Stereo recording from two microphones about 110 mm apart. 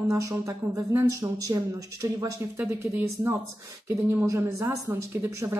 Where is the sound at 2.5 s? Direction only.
20° right (ahead or behind).